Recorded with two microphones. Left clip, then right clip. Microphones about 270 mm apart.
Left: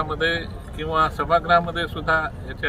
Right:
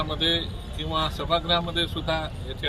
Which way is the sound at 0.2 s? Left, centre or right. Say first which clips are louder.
Left 2 dB; left.